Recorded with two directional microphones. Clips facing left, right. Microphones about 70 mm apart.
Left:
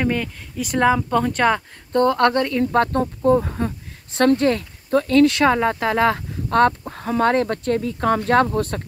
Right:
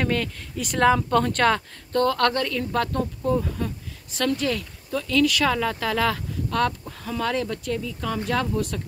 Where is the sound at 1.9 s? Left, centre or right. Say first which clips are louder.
Left 5 dB; left.